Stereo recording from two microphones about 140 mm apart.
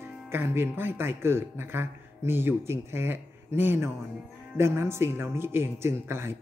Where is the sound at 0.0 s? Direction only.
15° right (ahead or behind).